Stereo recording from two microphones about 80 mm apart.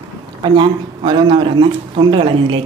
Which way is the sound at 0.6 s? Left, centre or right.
Right.